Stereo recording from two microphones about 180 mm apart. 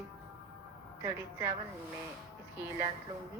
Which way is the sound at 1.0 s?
15° right (ahead or behind).